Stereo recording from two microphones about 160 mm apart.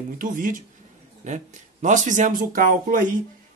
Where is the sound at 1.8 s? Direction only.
50° right (ahead or behind).